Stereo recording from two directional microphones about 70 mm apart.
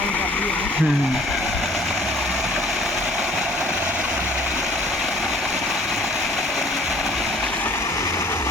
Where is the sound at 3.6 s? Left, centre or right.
Right.